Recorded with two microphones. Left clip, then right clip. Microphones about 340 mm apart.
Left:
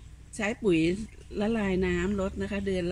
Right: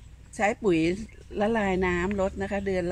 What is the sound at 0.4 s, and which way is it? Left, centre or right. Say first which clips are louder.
Speech: right 3 dB; centre.